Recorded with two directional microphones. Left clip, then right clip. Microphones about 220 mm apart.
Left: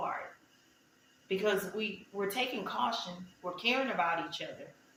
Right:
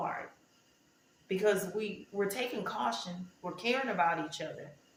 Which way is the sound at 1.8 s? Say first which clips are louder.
Right 2 dB; 20° right (ahead or behind).